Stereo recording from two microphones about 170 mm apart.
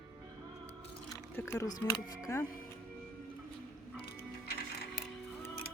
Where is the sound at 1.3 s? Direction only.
15° left (ahead or behind).